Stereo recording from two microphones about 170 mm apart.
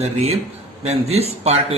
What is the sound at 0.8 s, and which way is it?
Speech, 40° right (ahead or behind).